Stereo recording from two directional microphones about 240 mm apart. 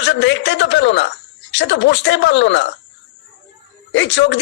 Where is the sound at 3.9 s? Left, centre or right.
Left.